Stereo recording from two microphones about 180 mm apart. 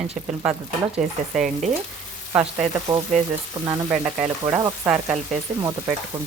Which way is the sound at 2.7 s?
20° right (ahead or behind).